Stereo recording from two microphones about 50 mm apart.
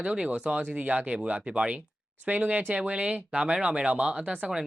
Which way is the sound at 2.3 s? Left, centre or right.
Right.